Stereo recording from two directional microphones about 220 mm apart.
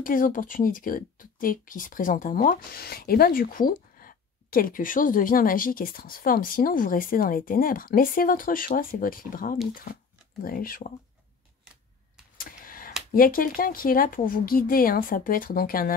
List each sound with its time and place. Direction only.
0.0 s speech: 40° left (ahead or behind)
12.4 s a sound: 40° left (ahead or behind)
13.1 s speech: 40° left (ahead or behind)